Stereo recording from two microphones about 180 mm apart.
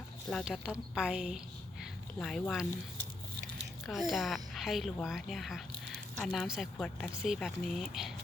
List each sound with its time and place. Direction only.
0.3 s speech: centre (ahead or behind)
3.8 s speech: centre (ahead or behind)